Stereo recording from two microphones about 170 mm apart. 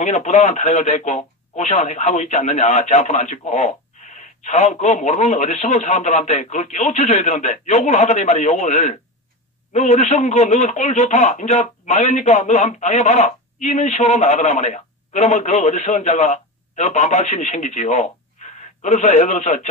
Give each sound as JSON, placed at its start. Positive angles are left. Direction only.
{"t": 0.0, "sound": "speech", "side_deg": 40}